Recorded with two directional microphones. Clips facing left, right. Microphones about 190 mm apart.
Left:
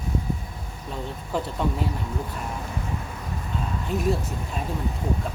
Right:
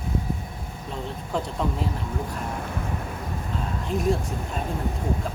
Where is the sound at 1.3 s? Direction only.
5° left (ahead or behind).